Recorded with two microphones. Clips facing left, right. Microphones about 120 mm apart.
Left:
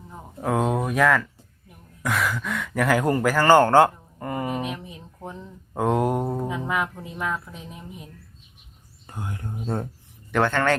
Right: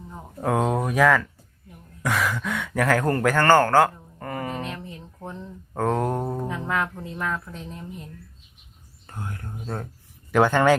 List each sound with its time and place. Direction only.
0.1 s speech: centre (ahead or behind)
3.5 s speech: 20° left (ahead or behind)
10.3 s speech: 15° right (ahead or behind)